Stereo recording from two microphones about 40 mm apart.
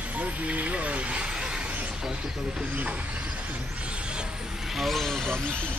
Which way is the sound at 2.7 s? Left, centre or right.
Right.